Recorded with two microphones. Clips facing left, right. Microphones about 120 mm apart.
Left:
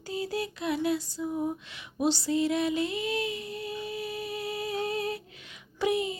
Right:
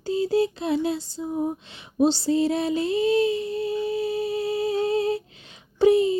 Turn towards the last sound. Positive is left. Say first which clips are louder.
# right 10 dB
turn(degrees=-30)  # may be behind; listen again after turning